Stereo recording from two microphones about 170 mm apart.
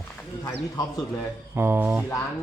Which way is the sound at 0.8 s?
20° left (ahead or behind).